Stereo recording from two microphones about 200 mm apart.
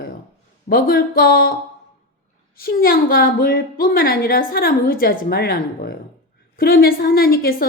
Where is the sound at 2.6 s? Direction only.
45° left (ahead or behind).